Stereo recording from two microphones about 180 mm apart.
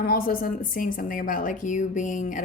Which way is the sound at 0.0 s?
55° left (ahead or behind).